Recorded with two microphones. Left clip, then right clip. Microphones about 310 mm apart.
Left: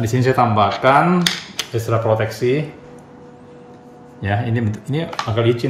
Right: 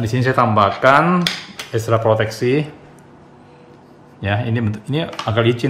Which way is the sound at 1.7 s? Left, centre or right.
Centre.